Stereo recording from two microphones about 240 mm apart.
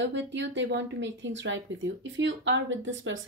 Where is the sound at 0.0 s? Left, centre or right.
Right.